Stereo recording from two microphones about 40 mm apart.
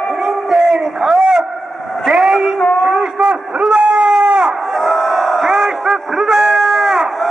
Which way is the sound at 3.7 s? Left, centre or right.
Right.